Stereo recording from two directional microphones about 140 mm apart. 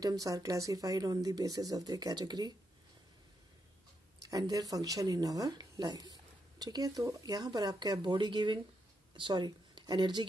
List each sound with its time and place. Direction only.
0.0 s speech: 25° right (ahead or behind)
4.2 s speech: 25° right (ahead or behind)